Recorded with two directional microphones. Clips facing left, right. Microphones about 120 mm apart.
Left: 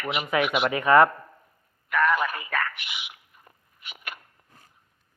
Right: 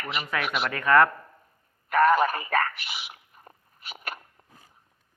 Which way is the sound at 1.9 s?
40° right (ahead or behind).